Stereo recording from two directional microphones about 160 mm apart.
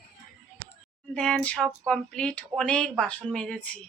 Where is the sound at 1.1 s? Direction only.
5° left (ahead or behind).